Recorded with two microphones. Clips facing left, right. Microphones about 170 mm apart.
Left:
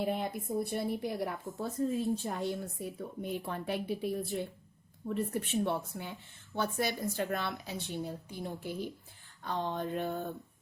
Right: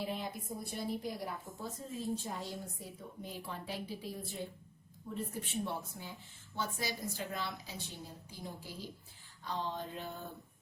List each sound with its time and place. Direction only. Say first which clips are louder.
0.0 s a woman's voice: left 6 dB; 55° left (ahead or behind)